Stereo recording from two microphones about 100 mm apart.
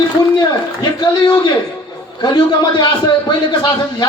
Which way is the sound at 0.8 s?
50° left (ahead or behind).